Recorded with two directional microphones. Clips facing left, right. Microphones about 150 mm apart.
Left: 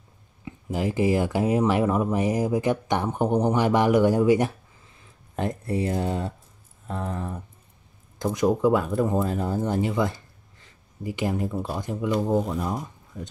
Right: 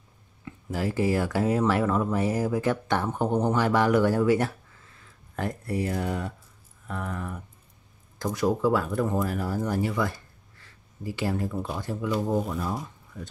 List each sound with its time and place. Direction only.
0.5 s speech: 15° left (ahead or behind)
11.5 s speech: 5° left (ahead or behind)
11.8 s speech: 15° left (ahead or behind)
12.8 s a sound: 20° left (ahead or behind)